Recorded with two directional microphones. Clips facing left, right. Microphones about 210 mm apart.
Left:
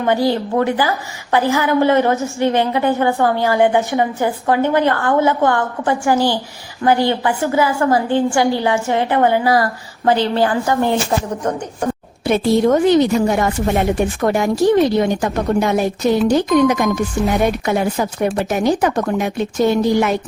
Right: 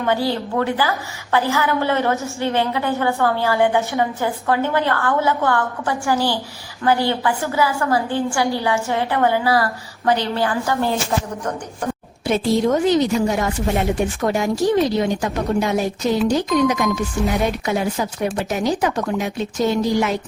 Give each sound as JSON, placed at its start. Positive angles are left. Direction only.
{"t": 0.0, "sound": "a woman's voice", "side_deg": 15}
{"t": 10.1, "sound": "a woman's voice", "side_deg": 30}
{"t": 10.6, "sound": "a woman's voice", "side_deg": 15}
{"t": 12.2, "sound": "speech", "side_deg": 60}